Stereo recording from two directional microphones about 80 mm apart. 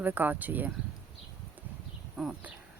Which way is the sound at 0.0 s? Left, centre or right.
Right.